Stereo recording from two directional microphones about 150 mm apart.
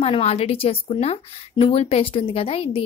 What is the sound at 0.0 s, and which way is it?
Speech, 40° left (ahead or behind).